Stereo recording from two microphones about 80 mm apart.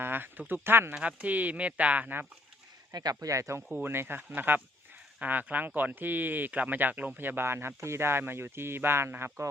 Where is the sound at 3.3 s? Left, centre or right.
Right.